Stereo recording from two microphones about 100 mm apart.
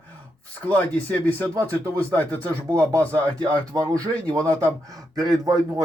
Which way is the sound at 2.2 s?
15° left (ahead or behind).